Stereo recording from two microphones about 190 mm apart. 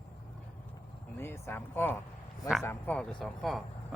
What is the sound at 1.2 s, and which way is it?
Speech, 10° left (ahead or behind).